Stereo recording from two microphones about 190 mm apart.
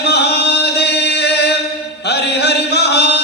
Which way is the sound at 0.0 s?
60° left (ahead or behind).